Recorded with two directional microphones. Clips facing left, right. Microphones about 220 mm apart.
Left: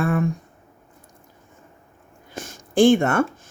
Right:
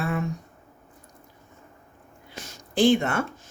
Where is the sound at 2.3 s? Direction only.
50° left (ahead or behind).